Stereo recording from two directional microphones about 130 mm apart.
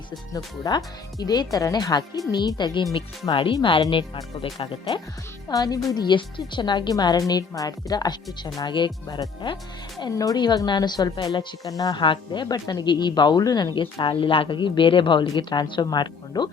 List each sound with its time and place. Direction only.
0.3 s speech: 30° left (ahead or behind)
5.5 s speech: 30° left (ahead or behind)